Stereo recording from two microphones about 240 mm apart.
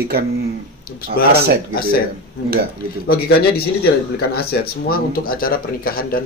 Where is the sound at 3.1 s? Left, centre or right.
Left.